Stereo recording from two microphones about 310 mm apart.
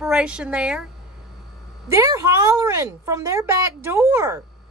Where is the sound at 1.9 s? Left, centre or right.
Centre.